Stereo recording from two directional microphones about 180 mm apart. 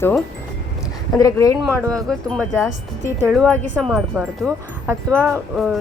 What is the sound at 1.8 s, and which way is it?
Speech, 20° right (ahead or behind).